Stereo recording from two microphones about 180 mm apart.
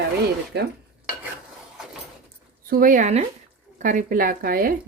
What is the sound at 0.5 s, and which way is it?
Dishes, 65° right (ahead or behind).